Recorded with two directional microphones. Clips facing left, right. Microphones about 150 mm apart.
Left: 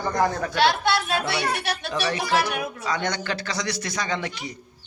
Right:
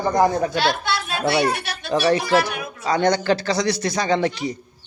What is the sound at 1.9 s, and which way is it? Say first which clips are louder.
Speech: right 8 dB; 30° right (ahead or behind).